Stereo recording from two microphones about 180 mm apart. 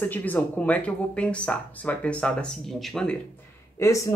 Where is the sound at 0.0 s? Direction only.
10° left (ahead or behind).